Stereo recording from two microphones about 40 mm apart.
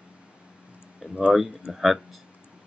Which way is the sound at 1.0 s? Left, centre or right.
Centre.